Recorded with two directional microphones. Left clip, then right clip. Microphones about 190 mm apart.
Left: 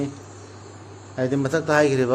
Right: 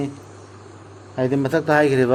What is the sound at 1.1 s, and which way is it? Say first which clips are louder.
Speech: right 3 dB; 30° right (ahead or behind).